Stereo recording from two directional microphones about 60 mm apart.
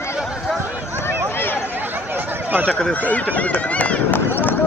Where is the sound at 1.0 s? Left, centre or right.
Left.